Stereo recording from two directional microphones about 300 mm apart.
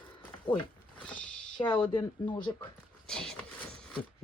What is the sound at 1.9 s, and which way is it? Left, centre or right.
Speech, centre.